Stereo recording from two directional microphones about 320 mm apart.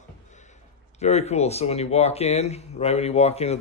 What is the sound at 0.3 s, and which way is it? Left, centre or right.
Speech, left.